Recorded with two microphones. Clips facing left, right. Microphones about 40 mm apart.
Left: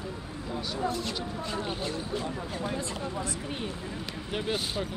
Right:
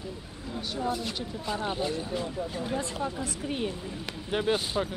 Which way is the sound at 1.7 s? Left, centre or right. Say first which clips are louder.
Right 2 dB; centre.